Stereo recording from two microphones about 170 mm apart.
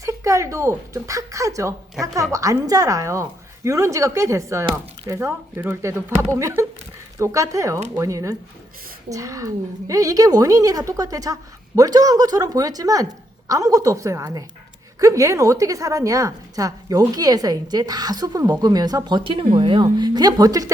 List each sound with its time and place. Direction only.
0.0 s speech: 20° right (ahead or behind)